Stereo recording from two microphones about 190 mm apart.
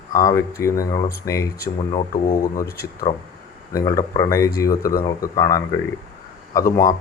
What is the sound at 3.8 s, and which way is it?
Speech, 20° left (ahead or behind).